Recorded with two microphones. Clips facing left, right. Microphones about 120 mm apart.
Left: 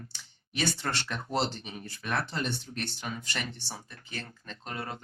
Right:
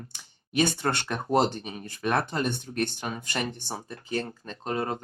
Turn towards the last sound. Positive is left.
turn(degrees=-35)  # may be behind; listen again after turning